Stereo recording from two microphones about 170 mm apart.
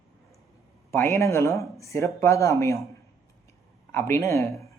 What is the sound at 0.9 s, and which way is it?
Speech, 15° left (ahead or behind).